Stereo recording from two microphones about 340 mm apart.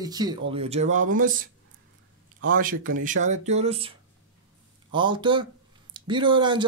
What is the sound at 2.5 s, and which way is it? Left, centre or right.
A man's voice, right.